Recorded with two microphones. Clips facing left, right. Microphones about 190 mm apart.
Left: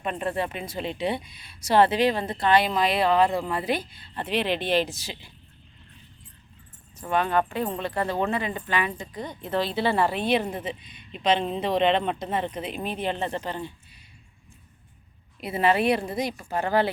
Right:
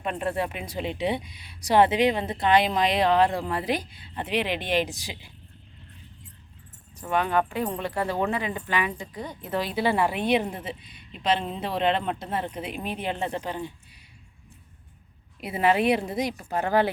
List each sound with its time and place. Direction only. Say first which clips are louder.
0.0 s speech: even; 5° right (ahead or behind)
7.1 s speech: even; 15° right (ahead or behind)
11.4 s speech: left 5 dB; 20° left (ahead or behind)
11.8 s speech: left 1 dB; 5° right (ahead or behind)
15.4 s speech: even; 10° right (ahead or behind)